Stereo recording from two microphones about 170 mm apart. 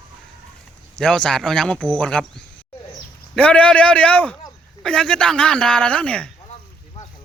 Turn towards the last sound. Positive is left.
turn(degrees=5)  # may be behind; listen again after turning